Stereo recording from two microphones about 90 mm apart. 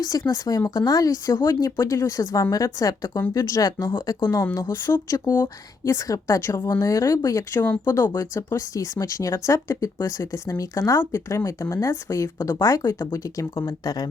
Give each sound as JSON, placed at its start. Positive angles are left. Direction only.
{"t": 0.0, "sound": "speech", "side_deg": 45}
{"t": 4.7, "sound": "speech", "side_deg": 35}